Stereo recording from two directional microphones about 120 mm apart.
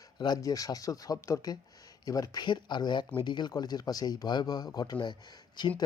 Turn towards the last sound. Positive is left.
turn(degrees=40)  # may be behind; listen again after turning